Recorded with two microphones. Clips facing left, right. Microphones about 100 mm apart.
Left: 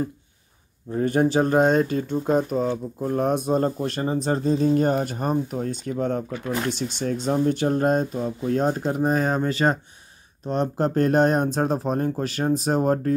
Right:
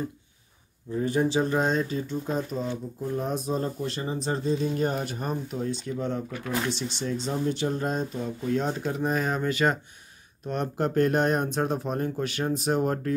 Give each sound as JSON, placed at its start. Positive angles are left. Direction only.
{"t": 0.9, "sound": "speech", "side_deg": 55}